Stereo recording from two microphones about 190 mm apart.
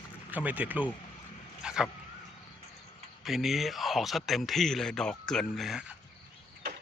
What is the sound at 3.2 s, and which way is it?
Speech, centre (ahead or behind).